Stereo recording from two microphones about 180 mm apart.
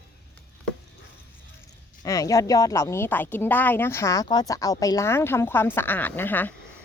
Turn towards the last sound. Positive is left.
turn(degrees=10)  # may be behind; listen again after turning